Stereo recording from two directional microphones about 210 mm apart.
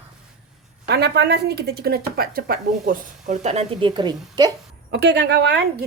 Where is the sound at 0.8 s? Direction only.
50° right (ahead or behind); by 4.1 s 20° right (ahead or behind).